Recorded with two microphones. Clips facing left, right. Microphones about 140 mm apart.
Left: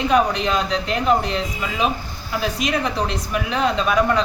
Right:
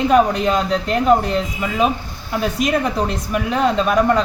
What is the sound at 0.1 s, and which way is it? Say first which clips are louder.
Speech: right 3 dB; 45° right (ahead or behind).